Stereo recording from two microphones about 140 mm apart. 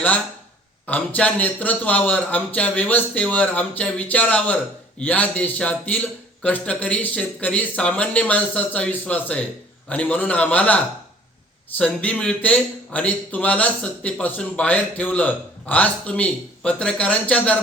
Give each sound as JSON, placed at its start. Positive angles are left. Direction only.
{"t": 0.9, "sound": "speech", "side_deg": 10}
{"t": 11.8, "sound": "speech", "side_deg": 10}